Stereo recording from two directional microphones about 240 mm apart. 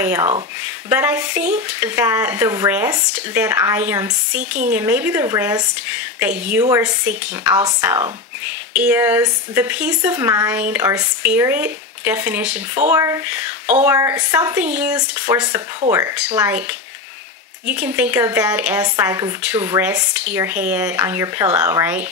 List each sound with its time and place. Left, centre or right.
0.0 s speech: centre
4.4 s speech: right
4.7 s a woman's voice: centre